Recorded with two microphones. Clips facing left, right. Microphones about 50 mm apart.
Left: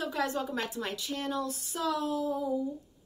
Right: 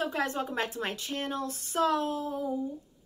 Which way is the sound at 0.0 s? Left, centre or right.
Right.